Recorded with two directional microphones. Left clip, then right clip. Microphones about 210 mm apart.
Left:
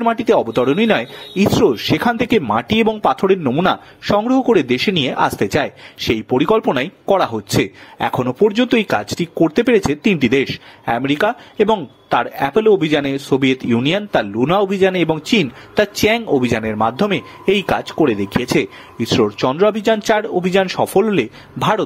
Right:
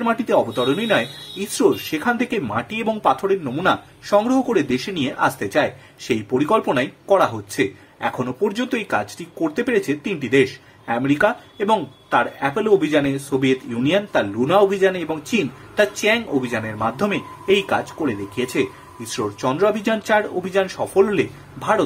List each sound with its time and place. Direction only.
0.0 s speech: 40° left (ahead or behind)